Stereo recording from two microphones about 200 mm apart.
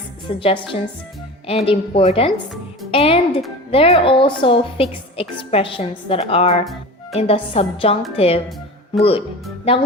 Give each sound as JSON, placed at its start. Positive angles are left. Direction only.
{"t": 0.3, "sound": "a woman's voice", "side_deg": 25}